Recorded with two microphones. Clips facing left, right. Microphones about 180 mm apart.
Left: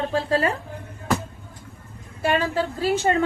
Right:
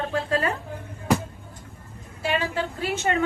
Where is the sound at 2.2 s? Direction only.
45° left (ahead or behind).